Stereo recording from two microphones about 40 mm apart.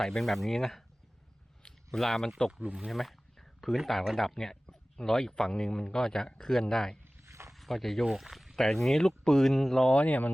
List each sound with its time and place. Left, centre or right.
0.2 s speech: centre
1.6 s a sound: centre
3.8 s speech: centre
4.4 s speech: centre
6.0 s speech: centre
6.2 s speech: left
7.5 s speech: centre
8.0 s speech: centre
8.5 s speech: centre
9.9 s speech: left